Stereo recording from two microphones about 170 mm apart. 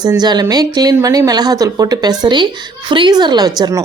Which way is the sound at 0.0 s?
25° right (ahead or behind).